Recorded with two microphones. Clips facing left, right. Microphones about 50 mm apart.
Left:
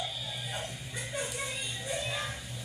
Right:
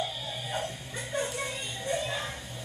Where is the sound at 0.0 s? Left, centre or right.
Right.